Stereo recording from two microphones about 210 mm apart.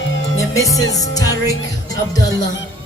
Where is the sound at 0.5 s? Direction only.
15° left (ahead or behind).